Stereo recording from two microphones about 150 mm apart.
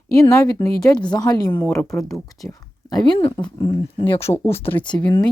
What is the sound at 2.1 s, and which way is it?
A woman's voice, 25° left (ahead or behind).